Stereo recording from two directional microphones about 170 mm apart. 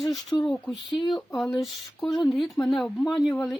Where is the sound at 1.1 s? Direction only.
Centre (ahead or behind).